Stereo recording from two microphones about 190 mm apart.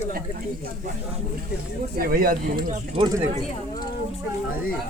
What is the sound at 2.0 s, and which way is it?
Speech, 50° right (ahead or behind).